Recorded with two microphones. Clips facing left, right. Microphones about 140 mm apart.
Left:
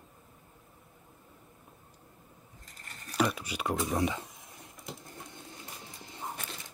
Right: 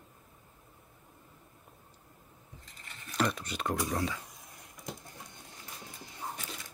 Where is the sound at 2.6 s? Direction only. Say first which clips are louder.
Left 2 dB; 45° left (ahead or behind).